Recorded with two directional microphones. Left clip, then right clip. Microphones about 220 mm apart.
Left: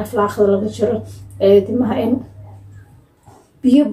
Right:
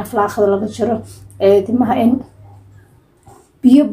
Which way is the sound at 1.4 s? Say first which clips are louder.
Even; 40° right (ahead or behind).